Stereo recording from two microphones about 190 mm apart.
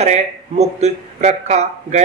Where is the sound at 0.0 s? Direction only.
35° right (ahead or behind).